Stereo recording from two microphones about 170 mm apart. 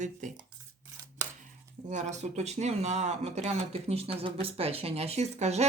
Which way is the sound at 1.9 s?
45° right (ahead or behind).